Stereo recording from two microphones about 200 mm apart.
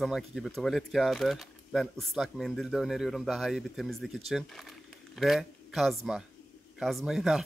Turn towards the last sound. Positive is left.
turn(degrees=0)  # may be behind; listen again after turning